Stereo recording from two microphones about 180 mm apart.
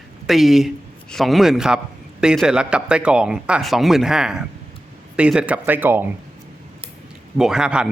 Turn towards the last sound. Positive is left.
turn(degrees=-5)  # may be behind; listen again after turning